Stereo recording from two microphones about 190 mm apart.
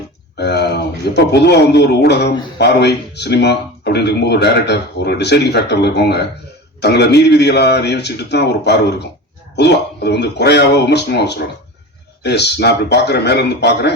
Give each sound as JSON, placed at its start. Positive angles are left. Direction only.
{"t": 0.3, "sound": "a man's voice", "side_deg": 60}